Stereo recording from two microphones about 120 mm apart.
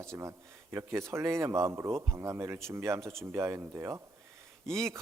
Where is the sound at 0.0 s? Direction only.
25° right (ahead or behind).